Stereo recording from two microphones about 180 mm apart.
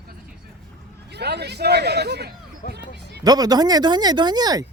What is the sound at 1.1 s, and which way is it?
Speech, 65° right (ahead or behind).